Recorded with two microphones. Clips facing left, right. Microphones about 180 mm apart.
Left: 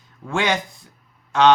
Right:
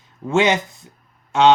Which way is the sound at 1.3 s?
25° right (ahead or behind).